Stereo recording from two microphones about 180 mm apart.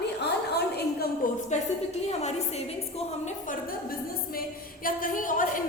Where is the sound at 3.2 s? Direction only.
45° left (ahead or behind).